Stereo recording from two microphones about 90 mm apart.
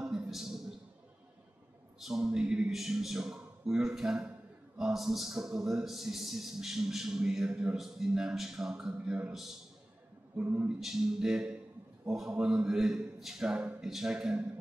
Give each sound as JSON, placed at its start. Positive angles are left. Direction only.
{"t": 0.0, "sound": "a sound", "side_deg": -5}
{"t": 2.0, "sound": "speech", "side_deg": -5}
{"t": 10.3, "sound": "a man's voice", "side_deg": -15}
{"t": 10.8, "sound": "a man's voice", "side_deg": -5}